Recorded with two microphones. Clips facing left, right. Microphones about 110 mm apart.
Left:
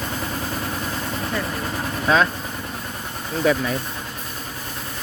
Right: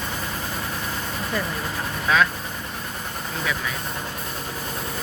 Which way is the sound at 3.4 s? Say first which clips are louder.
Left 9 dB; 40° left (ahead or behind).